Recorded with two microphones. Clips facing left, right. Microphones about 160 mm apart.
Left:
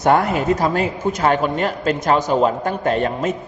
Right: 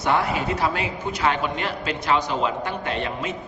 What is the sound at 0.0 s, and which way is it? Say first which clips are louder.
A man's voice: left 6 dB; 50° left (ahead or behind).